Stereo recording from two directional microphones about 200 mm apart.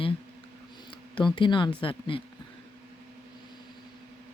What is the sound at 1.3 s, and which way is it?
Speech, 25° left (ahead or behind).